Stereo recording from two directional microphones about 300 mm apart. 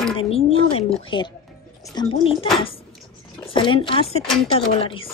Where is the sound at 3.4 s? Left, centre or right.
Centre.